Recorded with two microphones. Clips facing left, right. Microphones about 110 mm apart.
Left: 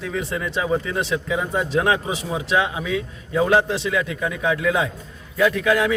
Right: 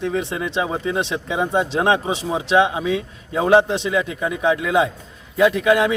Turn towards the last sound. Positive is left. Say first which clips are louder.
# right 3 dB
turn(degrees=-20)  # may be behind; listen again after turning